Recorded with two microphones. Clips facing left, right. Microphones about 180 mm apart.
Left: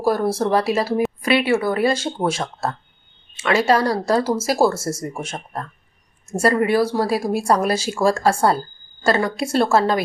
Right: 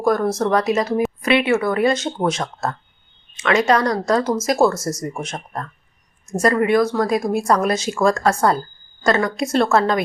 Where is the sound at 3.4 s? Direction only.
30° left (ahead or behind).